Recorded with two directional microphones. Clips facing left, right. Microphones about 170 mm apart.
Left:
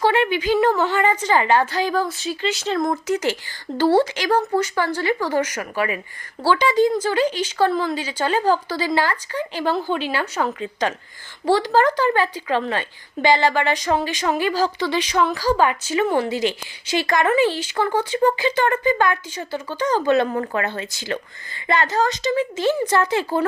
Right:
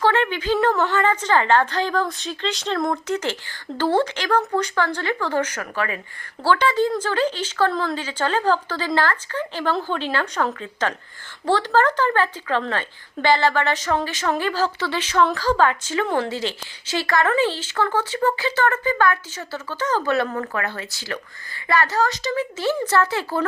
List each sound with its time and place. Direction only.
0.0 s a woman's voice: 10° left (ahead or behind)